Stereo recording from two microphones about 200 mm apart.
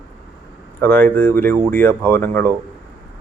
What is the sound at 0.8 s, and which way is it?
Speech, 10° left (ahead or behind).